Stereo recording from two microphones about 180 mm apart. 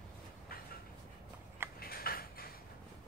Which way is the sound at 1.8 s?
55° left (ahead or behind).